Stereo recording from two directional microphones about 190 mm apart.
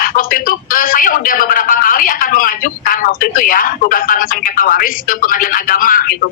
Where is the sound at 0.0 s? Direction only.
50° left (ahead or behind).